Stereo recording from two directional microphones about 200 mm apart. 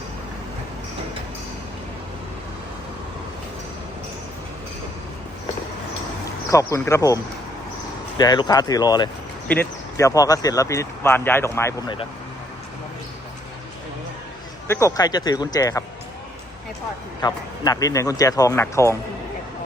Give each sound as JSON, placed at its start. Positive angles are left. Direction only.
{"t": 6.5, "sound": "speech", "side_deg": 15}
{"t": 8.2, "sound": "speech", "side_deg": 20}
{"t": 14.7, "sound": "speech", "side_deg": 15}
{"t": 17.2, "sound": "speech", "side_deg": 20}